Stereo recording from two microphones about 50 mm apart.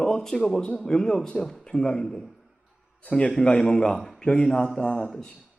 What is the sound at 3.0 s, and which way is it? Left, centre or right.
A man's voice, left.